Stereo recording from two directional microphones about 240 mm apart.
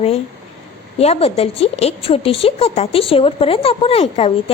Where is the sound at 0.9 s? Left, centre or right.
Left.